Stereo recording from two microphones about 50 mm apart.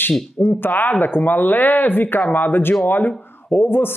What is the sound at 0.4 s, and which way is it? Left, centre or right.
Speech, left.